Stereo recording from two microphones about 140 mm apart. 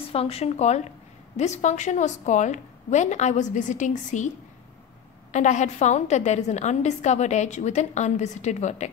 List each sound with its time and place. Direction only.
0.1 s a woman's voice: 45° left (ahead or behind); by 4.3 s 60° left (ahead or behind)
5.3 s a woman's voice: 60° left (ahead or behind)